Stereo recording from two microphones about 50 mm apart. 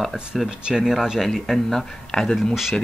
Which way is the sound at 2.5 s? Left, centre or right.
Centre.